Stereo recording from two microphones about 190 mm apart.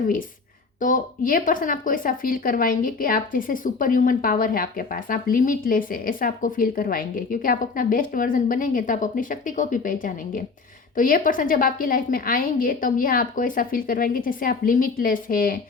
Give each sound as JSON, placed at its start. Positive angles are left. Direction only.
{"t": 0.8, "sound": "speech", "side_deg": 45}